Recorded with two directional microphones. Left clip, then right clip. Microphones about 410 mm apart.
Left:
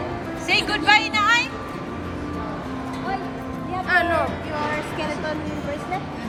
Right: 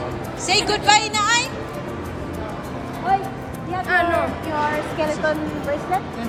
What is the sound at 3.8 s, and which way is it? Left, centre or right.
Music, centre.